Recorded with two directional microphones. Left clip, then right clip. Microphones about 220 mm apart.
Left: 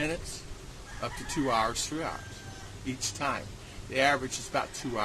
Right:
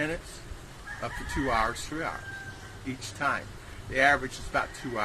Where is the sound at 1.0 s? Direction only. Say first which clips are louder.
Even; 10° left (ahead or behind).